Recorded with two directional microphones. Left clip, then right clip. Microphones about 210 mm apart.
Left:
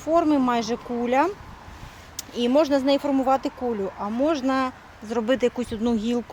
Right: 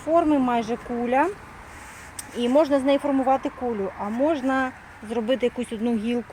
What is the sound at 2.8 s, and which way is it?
Speech, 15° left (ahead or behind).